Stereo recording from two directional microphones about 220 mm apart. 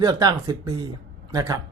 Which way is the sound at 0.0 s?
15° right (ahead or behind).